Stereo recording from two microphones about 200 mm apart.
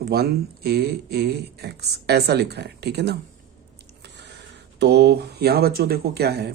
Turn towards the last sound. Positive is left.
turn(degrees=-55)  # may be behind; listen again after turning